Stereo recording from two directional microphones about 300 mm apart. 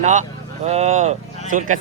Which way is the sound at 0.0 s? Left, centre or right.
Right.